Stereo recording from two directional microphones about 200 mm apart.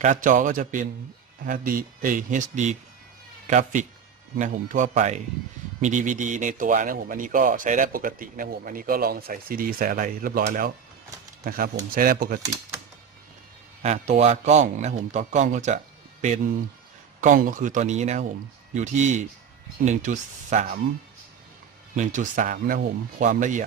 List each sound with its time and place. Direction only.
0.0 s a man's voice: 40° right (ahead or behind)
13.8 s speech: 35° right (ahead or behind)
17.2 s speech: 40° right (ahead or behind)
21.9 s speech: 40° right (ahead or behind)